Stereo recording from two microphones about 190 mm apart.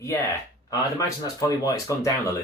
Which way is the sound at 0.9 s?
15° left (ahead or behind).